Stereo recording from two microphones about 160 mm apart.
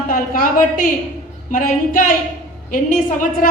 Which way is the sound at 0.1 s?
60° left (ahead or behind).